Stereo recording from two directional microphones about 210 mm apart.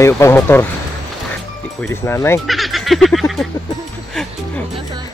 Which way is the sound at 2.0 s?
10° left (ahead or behind).